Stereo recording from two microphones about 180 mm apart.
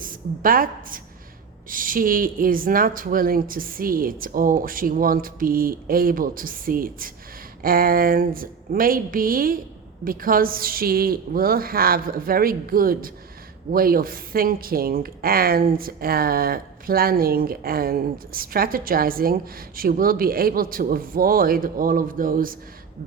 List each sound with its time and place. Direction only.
0.0 s a woman's voice: 50° right (ahead or behind)